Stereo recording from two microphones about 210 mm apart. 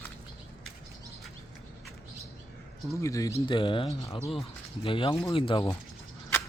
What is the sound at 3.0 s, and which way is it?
Speech, 15° left (ahead or behind).